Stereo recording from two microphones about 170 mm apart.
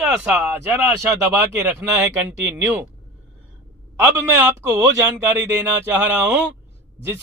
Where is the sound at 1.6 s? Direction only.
10° right (ahead or behind).